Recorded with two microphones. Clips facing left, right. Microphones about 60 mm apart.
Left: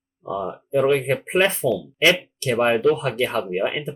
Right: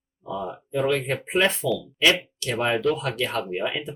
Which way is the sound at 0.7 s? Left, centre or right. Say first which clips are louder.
Left 5 dB; left.